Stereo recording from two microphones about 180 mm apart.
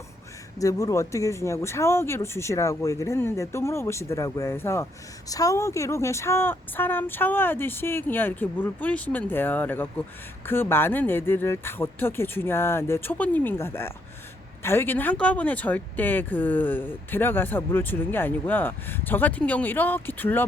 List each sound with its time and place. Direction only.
0.6 s speech: 20° left (ahead or behind)